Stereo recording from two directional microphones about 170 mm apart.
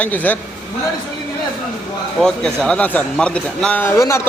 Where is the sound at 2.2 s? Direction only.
5° left (ahead or behind).